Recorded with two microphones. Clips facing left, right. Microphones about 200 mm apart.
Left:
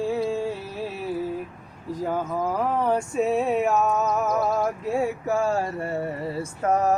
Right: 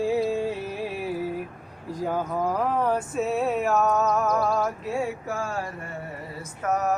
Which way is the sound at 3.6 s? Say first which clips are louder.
Even; centre (ahead or behind).